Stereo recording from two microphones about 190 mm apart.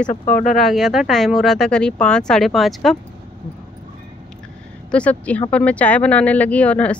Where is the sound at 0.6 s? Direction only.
Centre (ahead or behind).